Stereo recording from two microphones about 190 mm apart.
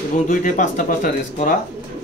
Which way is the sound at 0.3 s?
45° left (ahead or behind).